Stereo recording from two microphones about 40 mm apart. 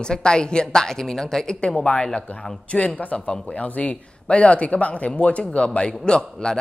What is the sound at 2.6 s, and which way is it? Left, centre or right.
Speech, left.